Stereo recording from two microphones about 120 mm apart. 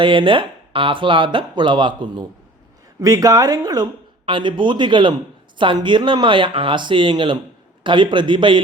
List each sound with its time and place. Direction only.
0.0 s speech: 45° right (ahead or behind); by 3.8 s 30° right (ahead or behind)
4.3 s speech: 40° right (ahead or behind)